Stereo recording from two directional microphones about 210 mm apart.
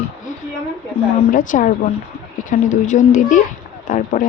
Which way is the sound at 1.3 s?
40° left (ahead or behind).